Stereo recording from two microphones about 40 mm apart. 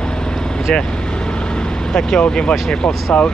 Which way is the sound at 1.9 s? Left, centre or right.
Centre.